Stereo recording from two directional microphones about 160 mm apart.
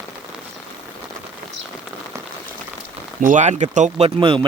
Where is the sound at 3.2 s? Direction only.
50° right (ahead or behind); by 4.5 s 35° right (ahead or behind).